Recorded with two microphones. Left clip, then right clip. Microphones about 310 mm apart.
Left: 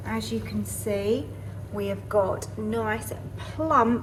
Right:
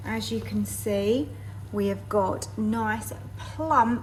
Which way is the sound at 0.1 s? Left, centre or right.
Right.